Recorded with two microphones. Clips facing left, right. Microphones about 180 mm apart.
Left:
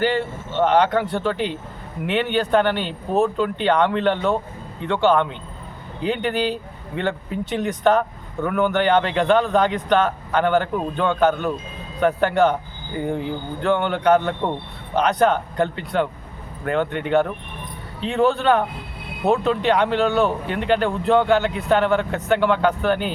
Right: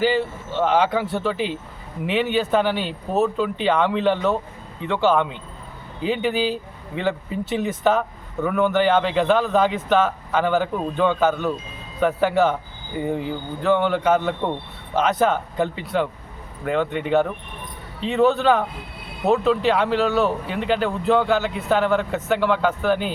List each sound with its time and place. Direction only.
0.0 s speech: 5° right (ahead or behind)